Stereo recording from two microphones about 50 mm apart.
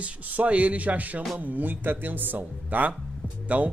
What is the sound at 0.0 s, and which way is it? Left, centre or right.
Speech, right.